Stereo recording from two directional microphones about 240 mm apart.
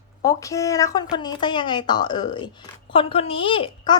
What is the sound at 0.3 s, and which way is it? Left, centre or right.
A woman's voice, centre.